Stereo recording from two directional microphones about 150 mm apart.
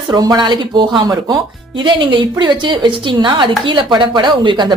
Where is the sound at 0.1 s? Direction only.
25° right (ahead or behind).